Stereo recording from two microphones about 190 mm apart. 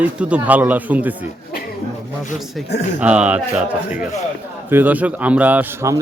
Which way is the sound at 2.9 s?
5° right (ahead or behind).